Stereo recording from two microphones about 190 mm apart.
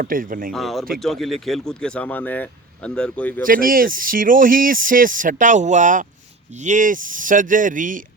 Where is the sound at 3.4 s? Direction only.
50° right (ahead or behind).